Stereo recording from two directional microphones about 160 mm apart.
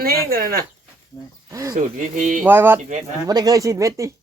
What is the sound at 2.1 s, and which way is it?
Speech, 55° right (ahead or behind).